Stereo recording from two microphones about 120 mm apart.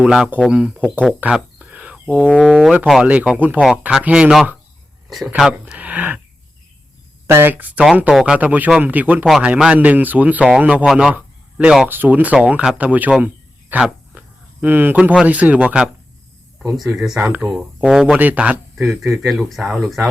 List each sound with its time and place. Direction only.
0.0 s speech: 10° right (ahead or behind)
1.0 s a sound: 10° right (ahead or behind)
2.0 s speech: 5° left (ahead or behind)
2.4 s speech: 5° right (ahead or behind)
7.3 s speech: 20° right (ahead or behind)
9.2 s speech: centre (ahead or behind)
17.2 s speech: 15° right (ahead or behind)
18.8 s speech: centre (ahead or behind)